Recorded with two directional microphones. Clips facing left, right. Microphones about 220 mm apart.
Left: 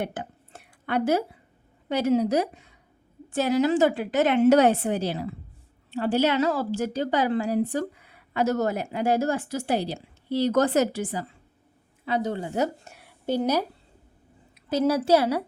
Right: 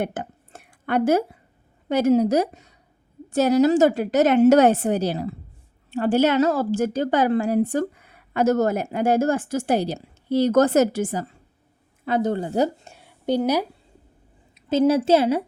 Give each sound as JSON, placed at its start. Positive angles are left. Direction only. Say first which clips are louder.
{"t": 0.0, "sound": "a sound", "louder": "right 4 dB", "side_deg": -50}
{"t": 1.9, "sound": "a woman's voice", "louder": "right 4 dB", "side_deg": -45}
{"t": 12.5, "sound": "speech", "louder": "right 4 dB", "side_deg": -30}
{"t": 13.2, "sound": "a woman's voice", "louder": "right 3 dB", "side_deg": -15}
{"t": 14.5, "sound": "a woman's voice", "louder": "right 5 dB", "side_deg": -25}